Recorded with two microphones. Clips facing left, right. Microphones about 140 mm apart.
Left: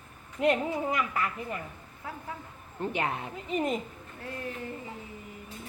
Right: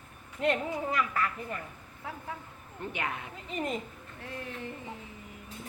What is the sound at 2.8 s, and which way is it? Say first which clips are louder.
Speech: left 5 dB; 30° left (ahead or behind).